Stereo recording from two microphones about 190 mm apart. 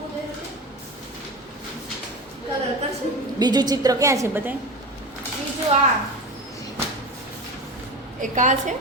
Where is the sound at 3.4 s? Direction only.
20° right (ahead or behind).